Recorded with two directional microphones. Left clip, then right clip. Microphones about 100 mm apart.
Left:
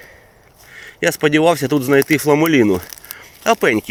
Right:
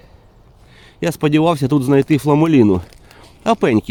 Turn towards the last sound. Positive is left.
turn(degrees=-65)  # may be behind; listen again after turning